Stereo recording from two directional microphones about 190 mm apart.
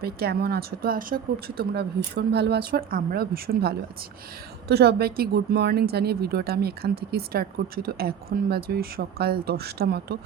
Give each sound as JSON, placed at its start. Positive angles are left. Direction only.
{"t": 0.0, "sound": "speech", "side_deg": -55}